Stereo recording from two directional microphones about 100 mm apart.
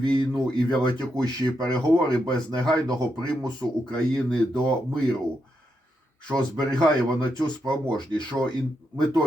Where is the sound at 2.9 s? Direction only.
40° right (ahead or behind).